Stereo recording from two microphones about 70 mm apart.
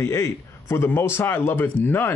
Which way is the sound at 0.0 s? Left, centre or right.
Left.